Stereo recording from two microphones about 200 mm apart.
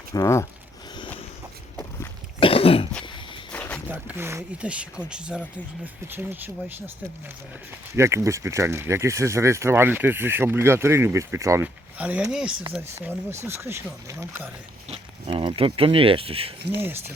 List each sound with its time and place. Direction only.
0.1 s speech: 15° left (ahead or behind)
2.4 s cough: 30° left (ahead or behind)
3.5 s a sound: 10° left (ahead or behind)
3.8 s speech: 10° right (ahead or behind)
7.9 s speech: 15° right (ahead or behind)
14.8 s speech: 25° right (ahead or behind)